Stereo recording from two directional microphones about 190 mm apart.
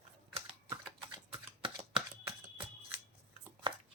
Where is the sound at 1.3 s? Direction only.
25° right (ahead or behind).